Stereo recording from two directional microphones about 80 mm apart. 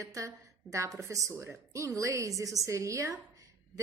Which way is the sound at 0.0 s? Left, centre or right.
Right.